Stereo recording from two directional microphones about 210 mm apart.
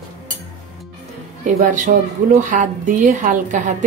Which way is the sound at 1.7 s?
40° right (ahead or behind).